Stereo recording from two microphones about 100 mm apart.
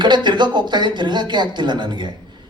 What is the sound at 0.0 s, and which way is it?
Speech, 50° right (ahead or behind).